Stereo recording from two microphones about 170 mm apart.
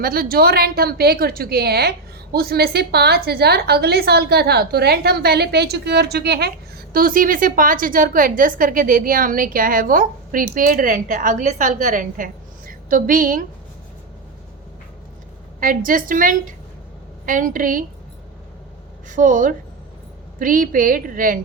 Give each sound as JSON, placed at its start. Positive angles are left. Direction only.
{"t": 0.0, "sound": "a woman's voice", "side_deg": -60}
{"t": 15.6, "sound": "a woman's voice", "side_deg": -55}
{"t": 19.0, "sound": "a woman's voice", "side_deg": -50}